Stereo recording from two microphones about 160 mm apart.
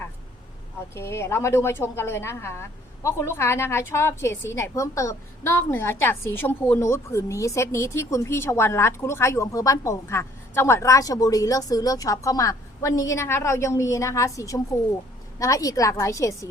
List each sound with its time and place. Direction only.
0.9 s a woman's voice: 15° left (ahead or behind)